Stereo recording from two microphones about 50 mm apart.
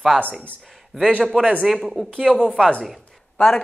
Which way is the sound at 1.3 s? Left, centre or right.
Centre.